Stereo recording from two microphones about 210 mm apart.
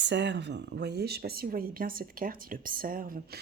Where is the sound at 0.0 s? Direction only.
55° right (ahead or behind).